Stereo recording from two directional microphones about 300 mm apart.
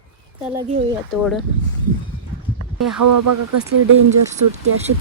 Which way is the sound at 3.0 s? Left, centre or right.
Right.